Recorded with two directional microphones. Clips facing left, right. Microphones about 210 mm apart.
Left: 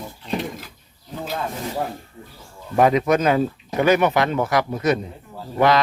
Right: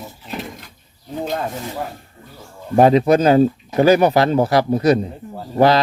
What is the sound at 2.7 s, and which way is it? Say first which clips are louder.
Speech: right 5 dB; 30° right (ahead or behind).